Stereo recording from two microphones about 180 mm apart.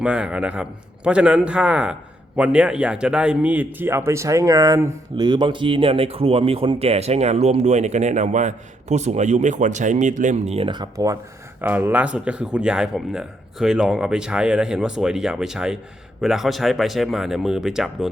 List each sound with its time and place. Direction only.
0.0 s a man's voice: 5° right (ahead or behind)